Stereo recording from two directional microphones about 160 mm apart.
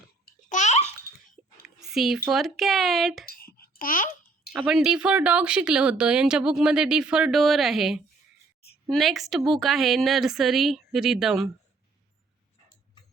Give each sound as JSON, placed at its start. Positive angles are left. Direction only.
{"t": 0.4, "sound": "babbling", "side_deg": 50}
{"t": 1.1, "sound": "dog", "side_deg": 70}
{"t": 1.6, "sound": "a sound", "side_deg": 0}
{"t": 2.3, "sound": "speech", "side_deg": 0}
{"t": 3.2, "sound": "babbling", "side_deg": 70}
{"t": 4.5, "sound": "speech", "side_deg": -5}